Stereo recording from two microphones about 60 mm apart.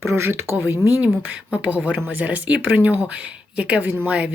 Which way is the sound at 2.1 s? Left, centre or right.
Right.